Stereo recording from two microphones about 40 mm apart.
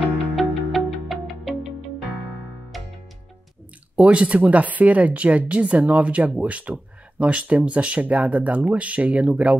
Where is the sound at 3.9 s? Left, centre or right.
Right.